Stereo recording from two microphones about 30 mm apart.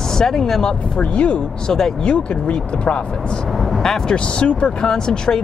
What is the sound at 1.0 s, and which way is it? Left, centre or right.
Speech, left.